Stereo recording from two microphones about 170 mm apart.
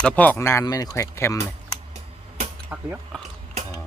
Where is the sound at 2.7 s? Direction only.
5° right (ahead or behind).